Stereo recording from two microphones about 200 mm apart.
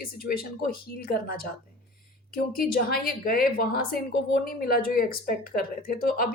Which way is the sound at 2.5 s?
45° left (ahead or behind).